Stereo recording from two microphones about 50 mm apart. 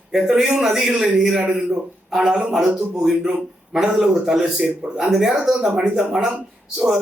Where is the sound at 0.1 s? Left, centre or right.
Centre.